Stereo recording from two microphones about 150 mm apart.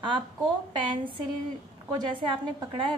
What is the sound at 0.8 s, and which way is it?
A woman's voice, 30° right (ahead or behind).